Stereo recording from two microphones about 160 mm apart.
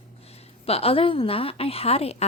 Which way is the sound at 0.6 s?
40° left (ahead or behind).